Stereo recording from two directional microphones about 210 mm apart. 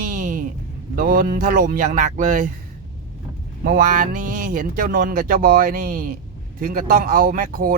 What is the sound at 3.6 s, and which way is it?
Speech, 45° right (ahead or behind).